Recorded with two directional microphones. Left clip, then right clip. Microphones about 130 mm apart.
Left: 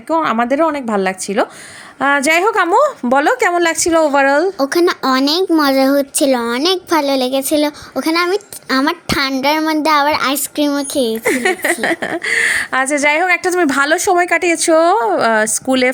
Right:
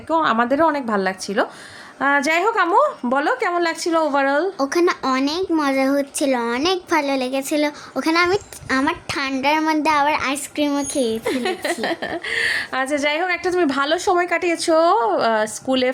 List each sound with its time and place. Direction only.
0.1 s a child's voice: 25° left (ahead or behind); by 4.4 s 40° left (ahead or behind)
4.5 s a child's voice: 25° left (ahead or behind)
5.0 s a woman's voice: 45° left (ahead or behind); by 8.4 s 20° left (ahead or behind)
8.7 s a child's voice: 35° left (ahead or behind)
10.7 s a child's voice: 20° left (ahead or behind)
11.2 s a woman's voice: 60° left (ahead or behind); by 15.9 s 40° left (ahead or behind)